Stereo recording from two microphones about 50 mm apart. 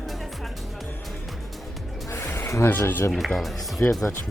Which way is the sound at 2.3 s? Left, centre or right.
Left.